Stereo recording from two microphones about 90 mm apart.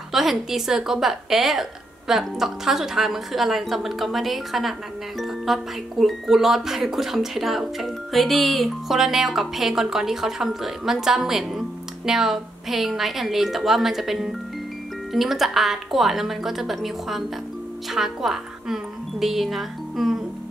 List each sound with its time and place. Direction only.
0.1 s a woman's voice: centre (ahead or behind)